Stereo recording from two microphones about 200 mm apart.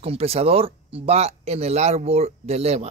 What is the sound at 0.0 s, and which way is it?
Speech, 30° right (ahead or behind).